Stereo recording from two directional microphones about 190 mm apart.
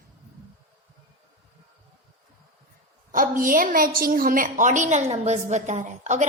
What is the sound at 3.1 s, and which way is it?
A woman's voice, 45° right (ahead or behind).